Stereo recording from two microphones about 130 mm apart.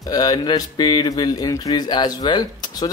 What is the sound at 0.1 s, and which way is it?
Speech, 30° left (ahead or behind).